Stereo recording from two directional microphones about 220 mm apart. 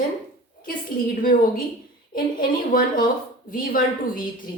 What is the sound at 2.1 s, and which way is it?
Speech, 40° left (ahead or behind).